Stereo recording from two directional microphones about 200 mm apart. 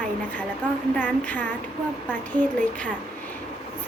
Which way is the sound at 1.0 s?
10° left (ahead or behind).